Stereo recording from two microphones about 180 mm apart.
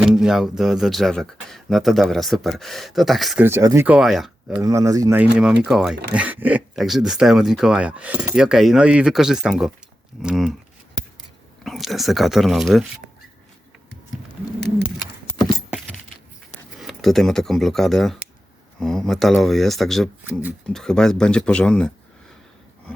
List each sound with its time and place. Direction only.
0.0 s speech: 5° right (ahead or behind)
3.4 s speech: 15° right (ahead or behind)
3.8 s speech: 5° right (ahead or behind)
4.6 s speech: 20° right (ahead or behind)
5.6 s speech: centre (ahead or behind)
11.6 s speech: centre (ahead or behind)
15.4 s keys jangling: 20° left (ahead or behind)
16.5 s speech: centre (ahead or behind)